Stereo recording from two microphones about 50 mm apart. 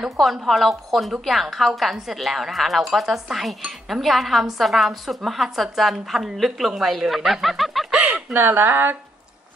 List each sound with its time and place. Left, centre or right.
0.2 s speech: centre
7.9 s a sound: right
8.4 s speech: right